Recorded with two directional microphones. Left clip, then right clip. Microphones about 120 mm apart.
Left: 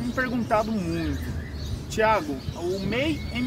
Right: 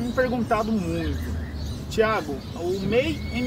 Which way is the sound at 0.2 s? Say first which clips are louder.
Right 1 dB; 25° left (ahead or behind).